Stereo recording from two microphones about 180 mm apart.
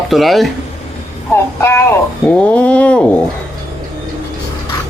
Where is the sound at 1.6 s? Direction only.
15° left (ahead or behind).